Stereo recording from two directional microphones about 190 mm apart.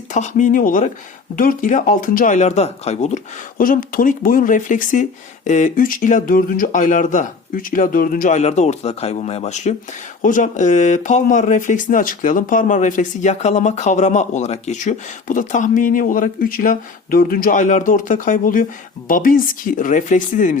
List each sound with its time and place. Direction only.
0.1 s speech: 40° left (ahead or behind)
3.6 s speech: 45° left (ahead or behind)